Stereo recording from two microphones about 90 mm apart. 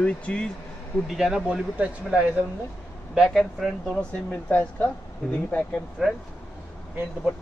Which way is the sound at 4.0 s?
15° left (ahead or behind).